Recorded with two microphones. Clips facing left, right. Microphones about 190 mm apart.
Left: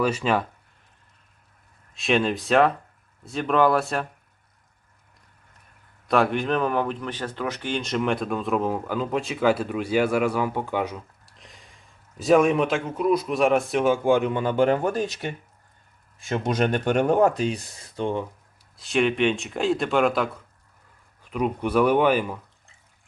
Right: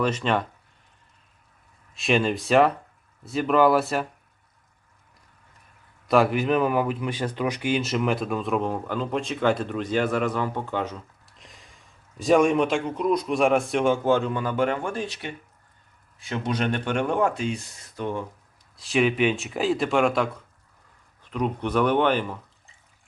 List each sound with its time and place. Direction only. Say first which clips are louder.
0.0 s speech: left 1 dB; 5° left (ahead or behind)
1.9 s speech: even; centre (ahead or behind)
6.1 s speech: right 1 dB; centre (ahead or behind)
11.3 s speech: left 1 dB; centre (ahead or behind); by 18.3 s 25° left (ahead or behind)
18.8 s speech: even; centre (ahead or behind)